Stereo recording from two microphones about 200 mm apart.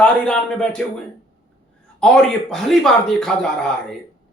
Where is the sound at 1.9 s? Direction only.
5° left (ahead or behind).